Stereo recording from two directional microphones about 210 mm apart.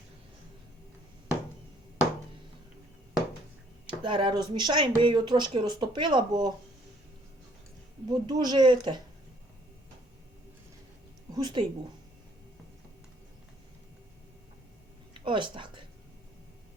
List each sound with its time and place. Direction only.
3.8 s speech: 25° right (ahead or behind)
8.0 s speech: 20° right (ahead or behind)
11.3 s speech: 20° right (ahead or behind)
15.2 s speech: 25° right (ahead or behind)